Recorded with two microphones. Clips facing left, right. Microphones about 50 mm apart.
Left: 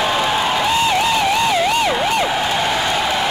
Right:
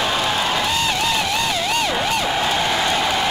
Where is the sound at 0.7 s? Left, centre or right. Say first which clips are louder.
Left 4 dB; centre.